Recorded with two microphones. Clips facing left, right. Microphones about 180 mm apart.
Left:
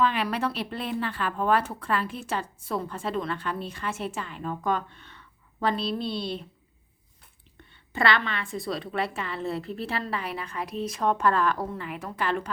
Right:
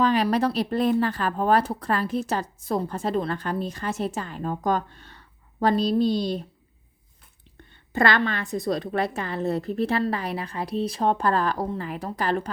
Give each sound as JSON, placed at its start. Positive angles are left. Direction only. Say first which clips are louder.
{"t": 0.0, "sound": "speech", "louder": "right 5 dB", "side_deg": -40}
{"t": 7.9, "sound": "speech", "louder": "right 4 dB", "side_deg": -45}